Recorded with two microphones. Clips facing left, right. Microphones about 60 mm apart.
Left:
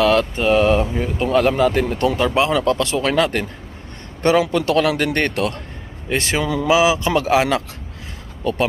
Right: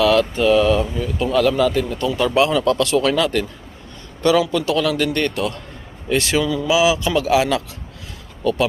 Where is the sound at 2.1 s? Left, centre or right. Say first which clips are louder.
Right 4 dB; left.